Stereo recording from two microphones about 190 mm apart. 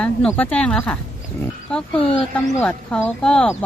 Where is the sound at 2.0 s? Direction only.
30° left (ahead or behind).